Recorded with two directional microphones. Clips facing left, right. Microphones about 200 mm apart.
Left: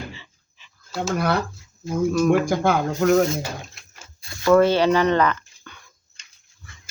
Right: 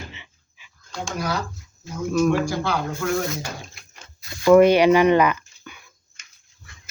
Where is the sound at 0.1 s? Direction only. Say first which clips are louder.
Left 3 dB; 20° right (ahead or behind).